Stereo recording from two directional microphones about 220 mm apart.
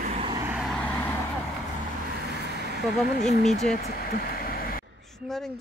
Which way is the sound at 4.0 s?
40° left (ahead or behind).